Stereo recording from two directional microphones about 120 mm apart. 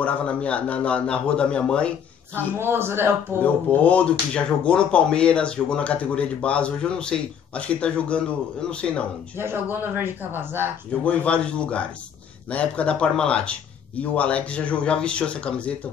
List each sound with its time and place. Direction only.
0.0 s speech: 10° left (ahead or behind)
2.5 s speech: 20° right (ahead or behind)
3.7 s speech: 10° left (ahead or behind)
9.4 s speech: 20° right (ahead or behind)
10.9 s speech: 10° left (ahead or behind)